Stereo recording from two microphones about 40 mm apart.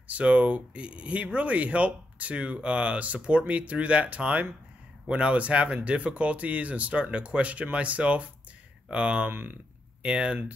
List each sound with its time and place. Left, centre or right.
0.1 s a man's voice: right
9.3 s speech: right
10.0 s a man's voice: right